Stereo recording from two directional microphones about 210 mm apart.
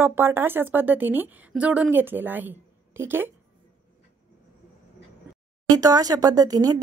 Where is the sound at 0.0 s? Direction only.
10° right (ahead or behind).